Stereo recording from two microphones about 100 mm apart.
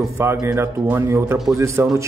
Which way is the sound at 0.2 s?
25° right (ahead or behind).